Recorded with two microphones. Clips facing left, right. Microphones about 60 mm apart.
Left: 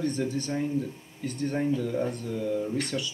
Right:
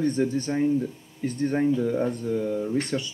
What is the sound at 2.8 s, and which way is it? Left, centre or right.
Speech, right.